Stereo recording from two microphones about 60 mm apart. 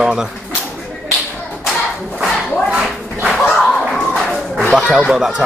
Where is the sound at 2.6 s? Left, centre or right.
Right.